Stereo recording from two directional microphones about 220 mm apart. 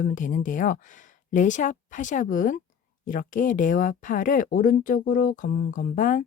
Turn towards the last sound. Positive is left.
turn(degrees=35)  # may be behind; listen again after turning